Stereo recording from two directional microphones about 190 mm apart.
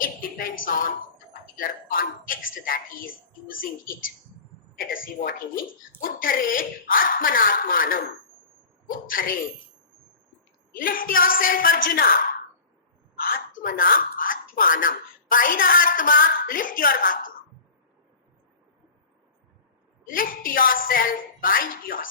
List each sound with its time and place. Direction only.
0.0 s a woman's voice: 45° left (ahead or behind)
5.2 s speech: 40° left (ahead or behind)
10.8 s speech: 45° left (ahead or behind)
20.1 s speech: 45° left (ahead or behind)